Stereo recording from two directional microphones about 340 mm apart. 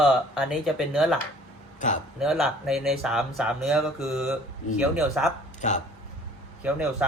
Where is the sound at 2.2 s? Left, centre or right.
Centre.